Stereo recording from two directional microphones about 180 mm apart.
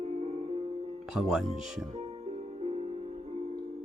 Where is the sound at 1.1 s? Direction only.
5° right (ahead or behind).